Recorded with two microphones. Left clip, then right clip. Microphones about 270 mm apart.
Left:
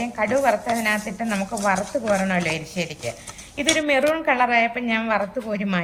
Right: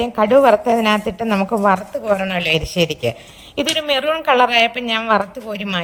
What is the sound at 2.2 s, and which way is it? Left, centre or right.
A woman's voice, right.